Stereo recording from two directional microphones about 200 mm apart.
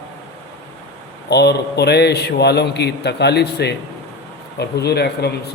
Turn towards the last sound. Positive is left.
turn(degrees=55)  # may be behind; listen again after turning